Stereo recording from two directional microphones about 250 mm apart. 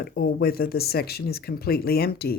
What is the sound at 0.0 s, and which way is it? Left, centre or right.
Speech, left.